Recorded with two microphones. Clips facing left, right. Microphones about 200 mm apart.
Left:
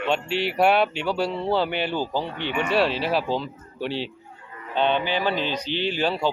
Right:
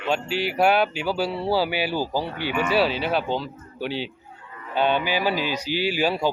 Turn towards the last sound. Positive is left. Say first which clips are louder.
# right 1 dB
turn(degrees=-10)  # may be behind; listen again after turning